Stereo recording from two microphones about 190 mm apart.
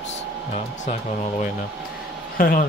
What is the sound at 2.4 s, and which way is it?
Speech, 50° left (ahead or behind).